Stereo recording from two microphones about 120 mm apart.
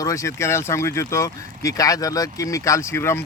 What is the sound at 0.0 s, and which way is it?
Speech, 25° left (ahead or behind).